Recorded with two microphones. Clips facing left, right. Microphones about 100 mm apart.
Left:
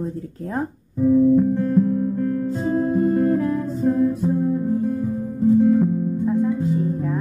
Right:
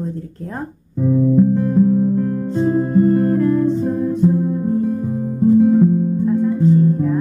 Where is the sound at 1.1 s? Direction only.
15° right (ahead or behind).